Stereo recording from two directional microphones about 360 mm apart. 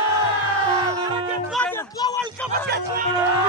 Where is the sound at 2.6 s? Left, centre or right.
Right.